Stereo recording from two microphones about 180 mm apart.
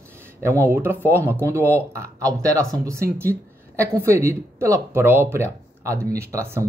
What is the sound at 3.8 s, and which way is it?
Speech, 15° right (ahead or behind).